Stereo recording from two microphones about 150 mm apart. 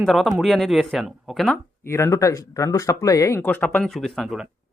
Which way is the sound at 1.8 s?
15° left (ahead or behind).